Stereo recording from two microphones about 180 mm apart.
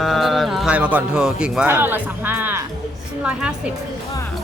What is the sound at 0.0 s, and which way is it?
Speech, centre (ahead or behind).